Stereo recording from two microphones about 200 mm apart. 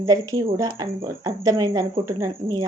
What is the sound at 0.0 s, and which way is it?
Speech, 15° right (ahead or behind).